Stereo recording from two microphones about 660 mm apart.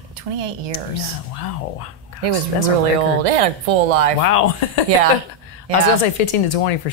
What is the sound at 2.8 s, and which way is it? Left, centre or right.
A woman's voice, right.